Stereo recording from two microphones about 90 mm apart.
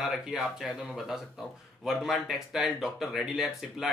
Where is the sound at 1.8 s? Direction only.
5° right (ahead or behind).